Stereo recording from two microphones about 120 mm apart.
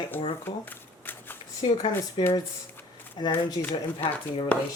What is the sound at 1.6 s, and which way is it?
Speech, 45° left (ahead or behind).